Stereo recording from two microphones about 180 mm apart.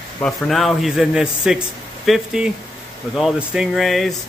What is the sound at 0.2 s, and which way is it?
Speech, centre (ahead or behind).